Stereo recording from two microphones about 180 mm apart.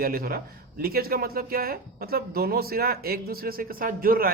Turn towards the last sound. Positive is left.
turn(degrees=-55)  # may be behind; listen again after turning